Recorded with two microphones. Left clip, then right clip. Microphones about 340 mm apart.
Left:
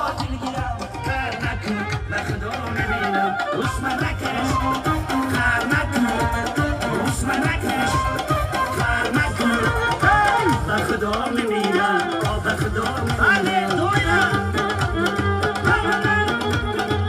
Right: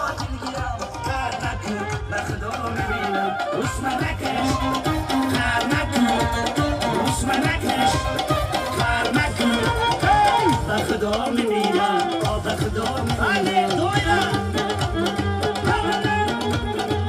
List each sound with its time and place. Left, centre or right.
3.8 s music: right